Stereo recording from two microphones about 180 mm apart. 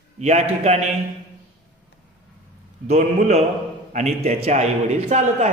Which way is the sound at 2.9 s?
35° right (ahead or behind).